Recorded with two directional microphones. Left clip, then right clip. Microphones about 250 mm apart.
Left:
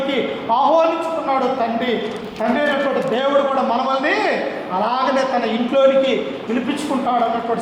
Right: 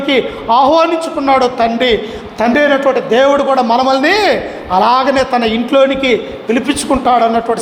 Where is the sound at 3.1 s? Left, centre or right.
Right.